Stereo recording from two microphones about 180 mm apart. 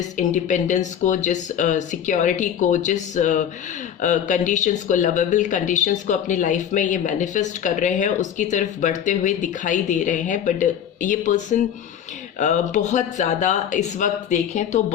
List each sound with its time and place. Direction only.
0.2 s speech: 45° left (ahead or behind)